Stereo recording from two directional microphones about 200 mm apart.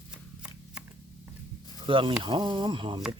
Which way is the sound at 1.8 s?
25° right (ahead or behind).